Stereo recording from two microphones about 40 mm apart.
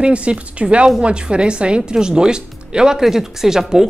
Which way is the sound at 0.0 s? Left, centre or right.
Right.